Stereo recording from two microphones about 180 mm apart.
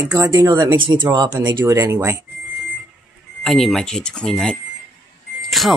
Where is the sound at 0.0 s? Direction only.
20° right (ahead or behind).